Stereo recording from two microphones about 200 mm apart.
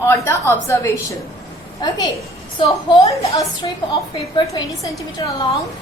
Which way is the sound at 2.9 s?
25° left (ahead or behind).